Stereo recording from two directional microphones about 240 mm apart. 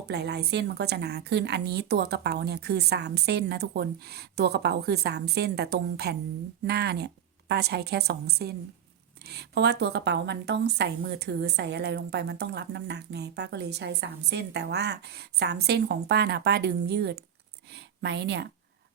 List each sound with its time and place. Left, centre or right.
0.1 s speech: right